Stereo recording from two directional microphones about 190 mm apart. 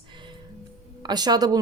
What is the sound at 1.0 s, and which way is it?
Speech, 20° right (ahead or behind).